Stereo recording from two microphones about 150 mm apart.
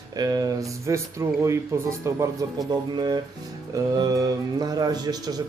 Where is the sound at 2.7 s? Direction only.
30° right (ahead or behind).